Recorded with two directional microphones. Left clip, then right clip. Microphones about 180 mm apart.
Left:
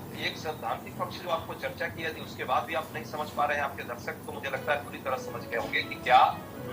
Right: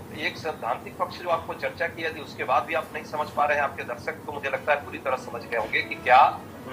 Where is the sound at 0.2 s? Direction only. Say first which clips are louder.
Right 4 dB; 50° right (ahead or behind).